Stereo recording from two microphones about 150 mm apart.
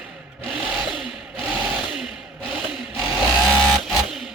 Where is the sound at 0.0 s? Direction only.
5° right (ahead or behind).